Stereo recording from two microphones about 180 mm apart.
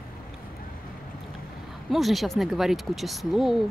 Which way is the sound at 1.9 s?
Centre (ahead or behind).